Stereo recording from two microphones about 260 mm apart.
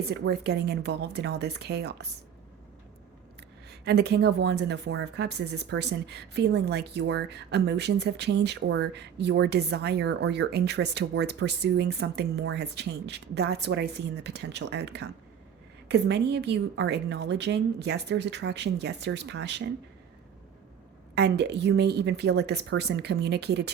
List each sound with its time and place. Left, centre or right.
0.0 s speech: right
3.7 s speech: right
21.2 s speech: right